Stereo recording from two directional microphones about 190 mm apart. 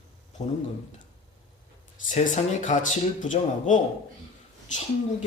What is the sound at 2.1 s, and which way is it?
Speech, 40° left (ahead or behind).